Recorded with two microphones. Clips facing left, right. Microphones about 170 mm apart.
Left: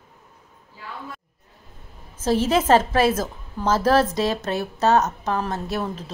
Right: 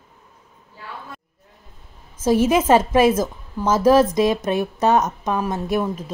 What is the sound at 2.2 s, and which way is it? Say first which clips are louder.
A woman's voice: right 3 dB; 15° right (ahead or behind).